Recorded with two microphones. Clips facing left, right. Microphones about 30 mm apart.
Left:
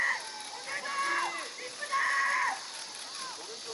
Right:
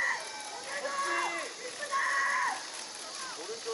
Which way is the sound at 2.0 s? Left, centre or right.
Left.